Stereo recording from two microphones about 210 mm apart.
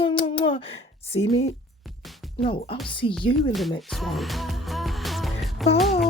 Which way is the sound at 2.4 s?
25° left (ahead or behind).